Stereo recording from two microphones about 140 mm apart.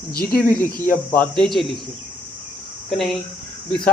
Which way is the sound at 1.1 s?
10° left (ahead or behind).